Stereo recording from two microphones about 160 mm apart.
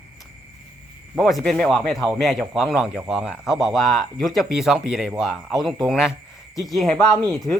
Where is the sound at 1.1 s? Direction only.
5° left (ahead or behind).